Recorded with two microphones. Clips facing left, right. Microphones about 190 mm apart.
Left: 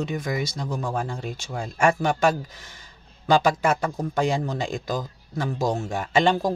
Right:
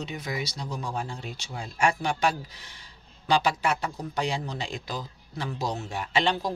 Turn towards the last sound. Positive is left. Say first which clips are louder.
# left 6 dB
turn(degrees=45)  # may be behind; listen again after turning